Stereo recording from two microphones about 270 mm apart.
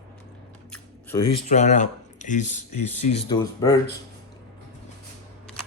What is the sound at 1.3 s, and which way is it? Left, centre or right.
Speech, left.